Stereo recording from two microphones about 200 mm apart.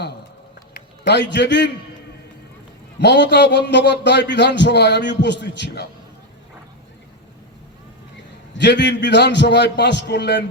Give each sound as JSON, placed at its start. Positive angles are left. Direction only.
{"t": 0.7, "sound": "a man's voice", "side_deg": 60}
{"t": 3.0, "sound": "a man's voice", "side_deg": 60}
{"t": 8.5, "sound": "a man's voice", "side_deg": 60}